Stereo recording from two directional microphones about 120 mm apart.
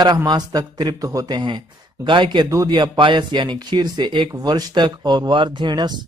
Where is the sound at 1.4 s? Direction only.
40° right (ahead or behind).